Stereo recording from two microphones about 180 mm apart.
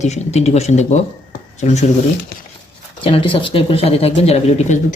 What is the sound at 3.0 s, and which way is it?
A woman's voice, 30° left (ahead or behind).